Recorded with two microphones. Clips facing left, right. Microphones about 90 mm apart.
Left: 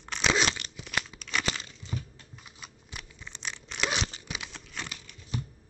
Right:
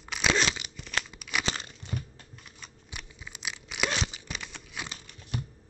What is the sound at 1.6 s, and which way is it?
Crumpling, 55° right (ahead or behind).